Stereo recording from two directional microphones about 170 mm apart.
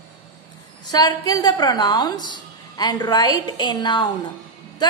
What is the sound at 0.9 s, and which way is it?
A woman's voice, 25° left (ahead or behind).